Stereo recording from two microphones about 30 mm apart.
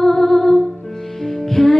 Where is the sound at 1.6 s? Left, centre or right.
Left.